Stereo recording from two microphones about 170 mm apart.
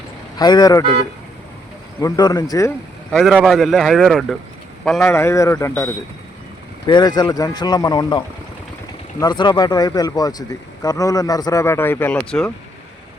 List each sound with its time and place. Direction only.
0.3 s speech: 25° left (ahead or behind)
2.0 s speech: 20° left (ahead or behind)
3.1 s speech: centre (ahead or behind)
5.0 s speech: 15° left (ahead or behind)
9.2 s speech: 25° left (ahead or behind); by 12.5 s 5° left (ahead or behind)